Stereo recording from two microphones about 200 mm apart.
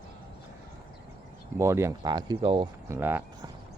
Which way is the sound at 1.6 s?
15° right (ahead or behind).